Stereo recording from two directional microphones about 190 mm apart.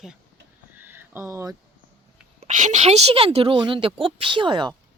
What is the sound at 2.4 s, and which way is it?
A woman's voice, 40° right (ahead or behind).